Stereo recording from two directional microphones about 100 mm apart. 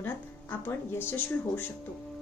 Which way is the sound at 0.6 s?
20° left (ahead or behind).